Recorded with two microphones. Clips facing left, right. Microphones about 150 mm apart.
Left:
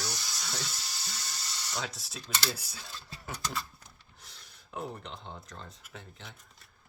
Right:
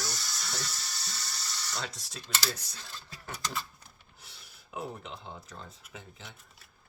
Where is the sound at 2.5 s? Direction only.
10° left (ahead or behind).